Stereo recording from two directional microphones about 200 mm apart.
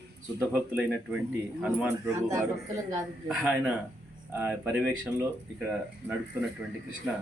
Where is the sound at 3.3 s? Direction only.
5° right (ahead or behind).